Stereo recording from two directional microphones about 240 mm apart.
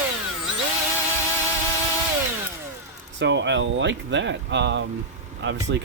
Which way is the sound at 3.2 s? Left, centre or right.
Right.